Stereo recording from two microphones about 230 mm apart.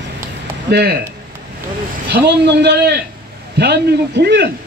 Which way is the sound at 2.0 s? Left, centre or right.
Right.